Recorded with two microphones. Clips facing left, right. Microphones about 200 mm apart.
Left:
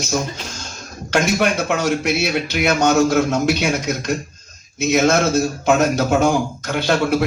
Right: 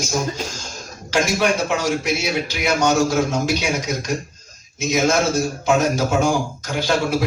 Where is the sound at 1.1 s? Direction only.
60° left (ahead or behind).